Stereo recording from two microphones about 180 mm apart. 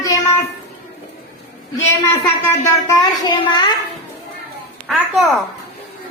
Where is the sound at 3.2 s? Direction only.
25° left (ahead or behind).